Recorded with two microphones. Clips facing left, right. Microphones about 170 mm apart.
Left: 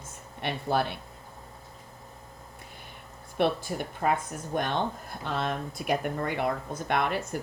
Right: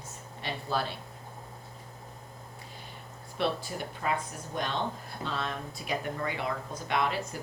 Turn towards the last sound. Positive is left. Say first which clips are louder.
# left 2 dB
turn(degrees=55)  # may be behind; listen again after turning